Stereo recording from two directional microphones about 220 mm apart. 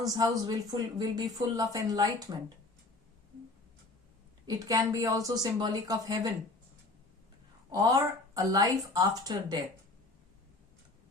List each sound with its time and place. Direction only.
0.0 s speech: 15° right (ahead or behind)
4.4 s speech: 15° right (ahead or behind)
7.7 s speech: 15° right (ahead or behind)